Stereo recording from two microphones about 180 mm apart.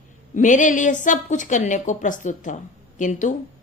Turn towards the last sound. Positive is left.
turn(degrees=45)  # may be behind; listen again after turning